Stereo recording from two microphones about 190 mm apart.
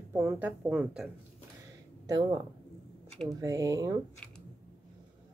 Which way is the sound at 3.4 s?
20° right (ahead or behind).